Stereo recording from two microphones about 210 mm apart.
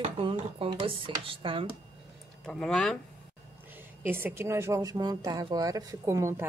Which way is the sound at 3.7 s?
10° right (ahead or behind).